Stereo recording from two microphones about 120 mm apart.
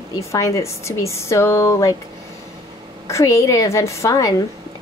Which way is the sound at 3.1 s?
25° left (ahead or behind).